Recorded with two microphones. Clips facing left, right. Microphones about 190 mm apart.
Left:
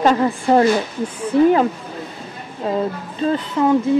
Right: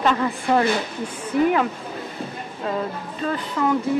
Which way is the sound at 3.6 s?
20° left (ahead or behind).